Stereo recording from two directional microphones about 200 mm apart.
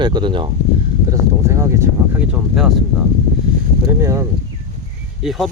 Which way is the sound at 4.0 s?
15° right (ahead or behind).